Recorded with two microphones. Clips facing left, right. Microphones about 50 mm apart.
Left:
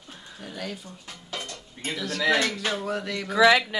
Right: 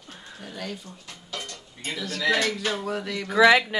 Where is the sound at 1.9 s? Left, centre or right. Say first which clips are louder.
Left 1 dB; centre.